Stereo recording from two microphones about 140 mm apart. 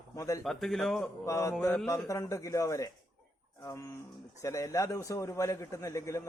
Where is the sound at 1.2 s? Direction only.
20° left (ahead or behind).